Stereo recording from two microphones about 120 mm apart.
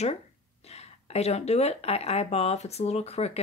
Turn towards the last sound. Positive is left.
turn(degrees=60)  # may be behind; listen again after turning